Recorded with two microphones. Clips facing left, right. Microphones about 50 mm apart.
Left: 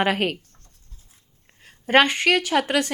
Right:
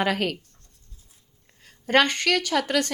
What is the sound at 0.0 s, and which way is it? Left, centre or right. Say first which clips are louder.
Speech: left 2 dB; left.